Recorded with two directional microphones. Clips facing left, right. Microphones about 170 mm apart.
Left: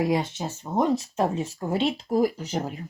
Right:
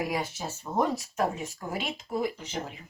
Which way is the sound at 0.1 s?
25° left (ahead or behind).